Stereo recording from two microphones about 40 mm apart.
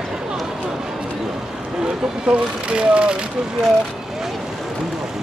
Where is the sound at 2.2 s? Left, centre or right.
Right.